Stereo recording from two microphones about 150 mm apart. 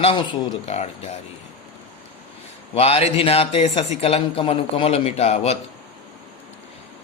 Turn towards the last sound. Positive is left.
turn(degrees=45)  # may be behind; listen again after turning